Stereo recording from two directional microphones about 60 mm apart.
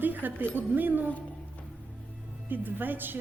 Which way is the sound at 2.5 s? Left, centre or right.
Right.